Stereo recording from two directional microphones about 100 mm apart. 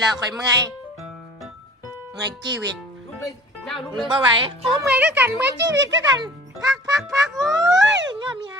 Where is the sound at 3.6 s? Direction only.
Centre (ahead or behind).